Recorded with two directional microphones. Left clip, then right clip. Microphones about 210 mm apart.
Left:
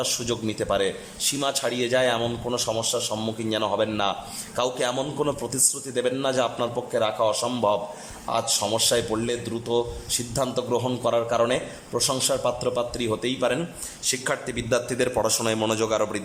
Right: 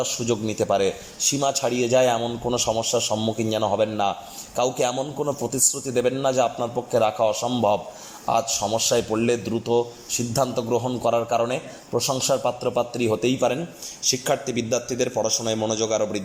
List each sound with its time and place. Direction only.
0.0 s a man's voice: centre (ahead or behind)